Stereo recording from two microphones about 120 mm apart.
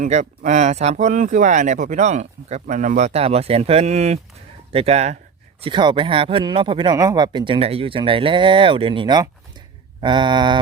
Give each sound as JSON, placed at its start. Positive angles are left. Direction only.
{"t": 0.0, "sound": "speech", "side_deg": -75}
{"t": 4.7, "sound": "speech", "side_deg": -55}
{"t": 5.6, "sound": "speech", "side_deg": -40}
{"t": 6.9, "sound": "speech", "side_deg": -30}
{"t": 10.0, "sound": "a sound", "side_deg": -40}